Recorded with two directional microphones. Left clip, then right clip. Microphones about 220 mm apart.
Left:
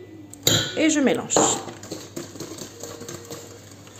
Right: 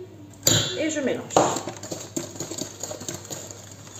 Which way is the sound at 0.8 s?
50° left (ahead or behind).